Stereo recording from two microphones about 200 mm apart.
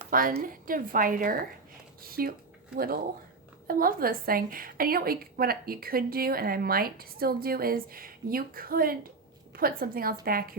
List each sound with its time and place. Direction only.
0.1 s a woman's voice: 45° right (ahead or behind)